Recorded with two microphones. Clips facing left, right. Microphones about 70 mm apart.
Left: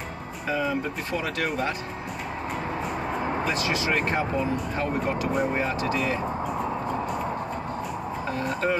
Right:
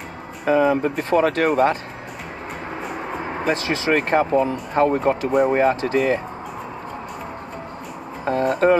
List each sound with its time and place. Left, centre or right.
0.5 s speech: right
3.4 s speech: right
5.3 s speech: right
8.3 s a sound: right